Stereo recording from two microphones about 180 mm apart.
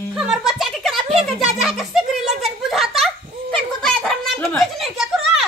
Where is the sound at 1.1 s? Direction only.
Centre (ahead or behind).